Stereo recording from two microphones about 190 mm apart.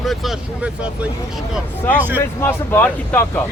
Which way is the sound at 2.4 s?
10° left (ahead or behind).